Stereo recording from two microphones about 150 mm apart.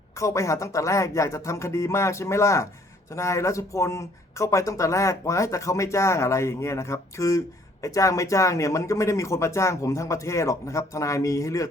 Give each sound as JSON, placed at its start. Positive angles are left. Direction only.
{"t": 0.2, "sound": "speech", "side_deg": 20}